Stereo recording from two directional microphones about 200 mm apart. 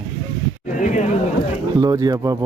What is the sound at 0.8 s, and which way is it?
Speech, 40° left (ahead or behind).